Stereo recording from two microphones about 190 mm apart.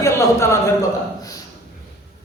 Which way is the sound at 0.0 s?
15° left (ahead or behind).